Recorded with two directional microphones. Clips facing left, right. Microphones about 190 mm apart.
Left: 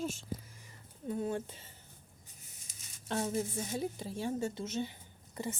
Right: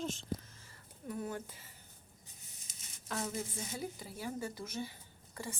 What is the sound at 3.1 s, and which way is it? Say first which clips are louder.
Speech: left 5 dB; 30° left (ahead or behind).